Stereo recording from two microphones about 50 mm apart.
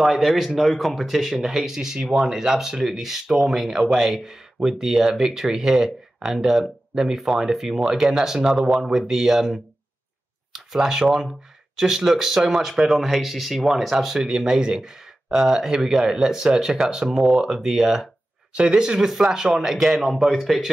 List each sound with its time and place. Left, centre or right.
0.0 s a man's voice: centre